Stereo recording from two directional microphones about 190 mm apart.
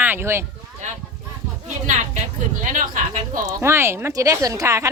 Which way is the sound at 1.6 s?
40° right (ahead or behind).